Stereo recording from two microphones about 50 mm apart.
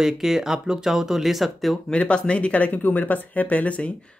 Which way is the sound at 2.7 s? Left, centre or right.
Left.